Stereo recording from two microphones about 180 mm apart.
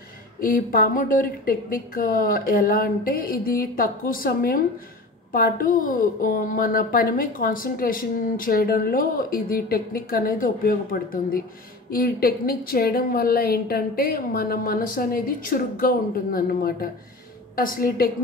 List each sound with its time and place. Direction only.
0.4 s a woman's voice: 50° left (ahead or behind)